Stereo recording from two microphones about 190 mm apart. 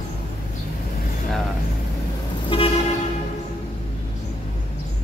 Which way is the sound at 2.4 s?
30° left (ahead or behind).